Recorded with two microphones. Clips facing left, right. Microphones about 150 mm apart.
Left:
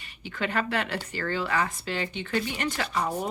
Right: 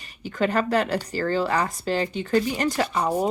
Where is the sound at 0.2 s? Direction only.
40° right (ahead or behind).